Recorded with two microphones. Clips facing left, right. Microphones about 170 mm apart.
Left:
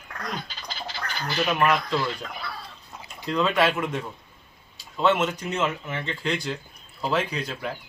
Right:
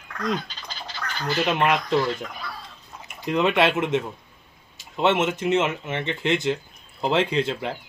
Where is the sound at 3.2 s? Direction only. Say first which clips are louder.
Right 2 dB; 20° right (ahead or behind).